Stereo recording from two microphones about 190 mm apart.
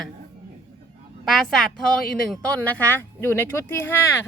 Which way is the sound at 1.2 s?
Centre (ahead or behind).